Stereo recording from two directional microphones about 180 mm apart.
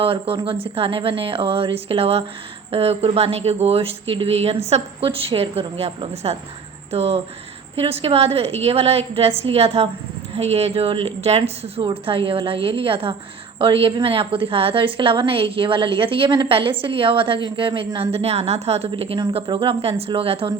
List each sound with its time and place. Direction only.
0.0 s a woman's voice: 30° right (ahead or behind)